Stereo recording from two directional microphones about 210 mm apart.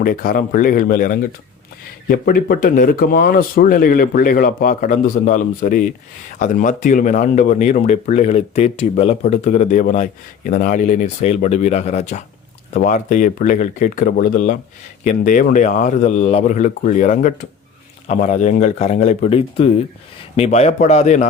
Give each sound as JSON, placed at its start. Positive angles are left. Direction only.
{"t": 0.0, "sound": "speech", "side_deg": 40}